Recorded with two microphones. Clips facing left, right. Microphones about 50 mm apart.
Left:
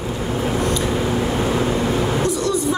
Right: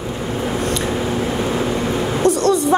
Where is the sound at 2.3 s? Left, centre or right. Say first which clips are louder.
Right 5 dB; right.